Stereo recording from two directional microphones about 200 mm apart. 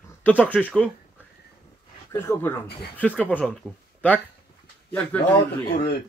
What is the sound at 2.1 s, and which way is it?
Speech, 10° left (ahead or behind).